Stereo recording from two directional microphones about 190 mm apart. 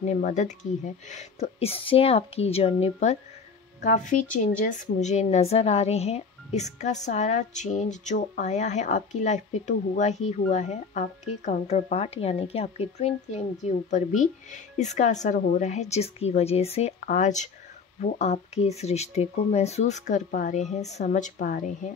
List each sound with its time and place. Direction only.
0.0 s a woman's voice: 40° left (ahead or behind)